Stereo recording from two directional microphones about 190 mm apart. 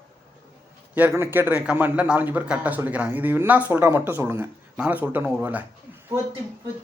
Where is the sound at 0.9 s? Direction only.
10° right (ahead or behind).